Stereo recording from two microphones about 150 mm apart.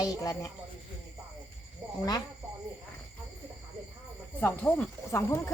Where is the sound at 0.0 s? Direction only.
25° left (ahead or behind).